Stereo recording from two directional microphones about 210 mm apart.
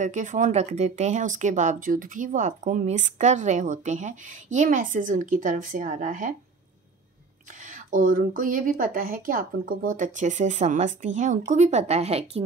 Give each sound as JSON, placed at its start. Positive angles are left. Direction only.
{"t": 0.0, "sound": "speech", "side_deg": -35}
{"t": 7.7, "sound": "speech", "side_deg": -40}